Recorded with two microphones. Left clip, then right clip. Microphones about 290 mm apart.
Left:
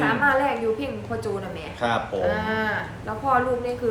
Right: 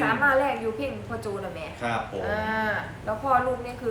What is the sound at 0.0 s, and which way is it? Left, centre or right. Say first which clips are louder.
A woman's voice: left 1 dB; centre.